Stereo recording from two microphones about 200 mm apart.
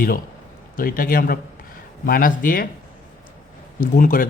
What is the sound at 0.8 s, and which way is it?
A man's voice, 45° left (ahead or behind).